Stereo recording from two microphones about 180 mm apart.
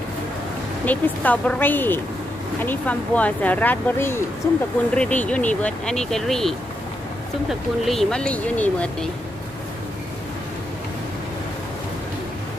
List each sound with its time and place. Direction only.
0.8 s speech: 10° left (ahead or behind)